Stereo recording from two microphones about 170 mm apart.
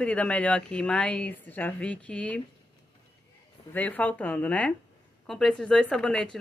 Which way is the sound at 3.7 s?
10° left (ahead or behind).